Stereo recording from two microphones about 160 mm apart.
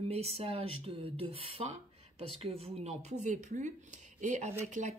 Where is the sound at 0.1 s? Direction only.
40° right (ahead or behind).